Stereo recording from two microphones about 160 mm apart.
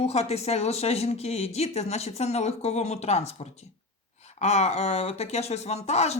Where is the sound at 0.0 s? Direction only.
40° left (ahead or behind).